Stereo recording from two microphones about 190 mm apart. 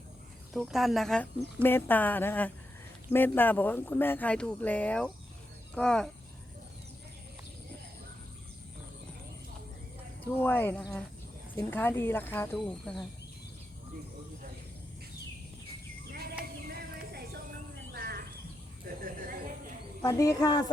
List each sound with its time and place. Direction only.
0.5 s speech: centre (ahead or behind)
10.4 s speech: 10° left (ahead or behind)
17.1 s music: 55° right (ahead or behind)
17.9 s cricket: 55° right (ahead or behind)
19.0 s a sound: 50° right (ahead or behind)
20.0 s speech: 20° left (ahead or behind)